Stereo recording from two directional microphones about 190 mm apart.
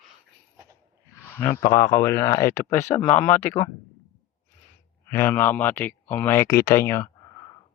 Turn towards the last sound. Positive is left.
turn(degrees=15)  # may be behind; listen again after turning